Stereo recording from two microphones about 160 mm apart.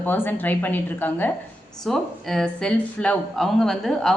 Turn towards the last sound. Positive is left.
turn(degrees=0)  # may be behind; listen again after turning